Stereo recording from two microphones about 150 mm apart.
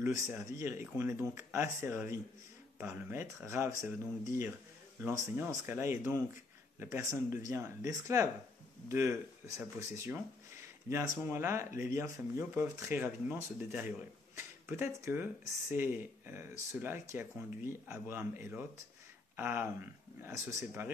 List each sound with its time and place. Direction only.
0.0 s speech: 15° right (ahead or behind)
5.0 s speech: 15° right (ahead or behind)
11.2 s speech: 15° right (ahead or behind)